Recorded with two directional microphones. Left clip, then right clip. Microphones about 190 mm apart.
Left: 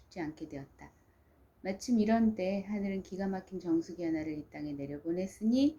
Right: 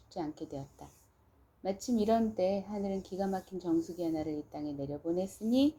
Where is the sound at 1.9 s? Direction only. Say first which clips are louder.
Even; 20° right (ahead or behind).